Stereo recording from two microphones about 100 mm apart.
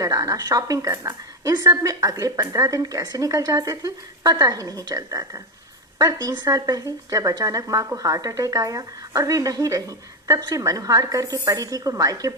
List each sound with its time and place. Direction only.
0.0 s a woman's voice: 35° right (ahead or behind)